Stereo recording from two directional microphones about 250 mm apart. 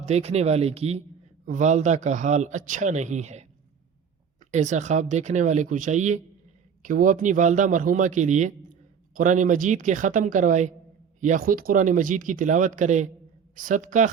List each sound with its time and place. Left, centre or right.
0.0 s speech: right
4.5 s speech: right